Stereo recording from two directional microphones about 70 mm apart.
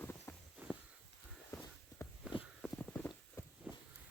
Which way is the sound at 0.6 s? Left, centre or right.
Right.